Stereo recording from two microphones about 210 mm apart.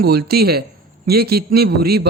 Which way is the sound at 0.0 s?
50° right (ahead or behind).